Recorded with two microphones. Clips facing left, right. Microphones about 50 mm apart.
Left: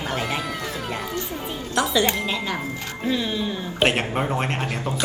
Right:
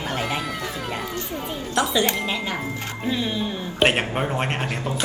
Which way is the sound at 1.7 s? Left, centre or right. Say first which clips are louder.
Even; centre.